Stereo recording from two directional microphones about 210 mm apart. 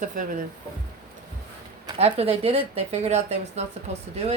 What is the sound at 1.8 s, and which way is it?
Speech, 25° right (ahead or behind).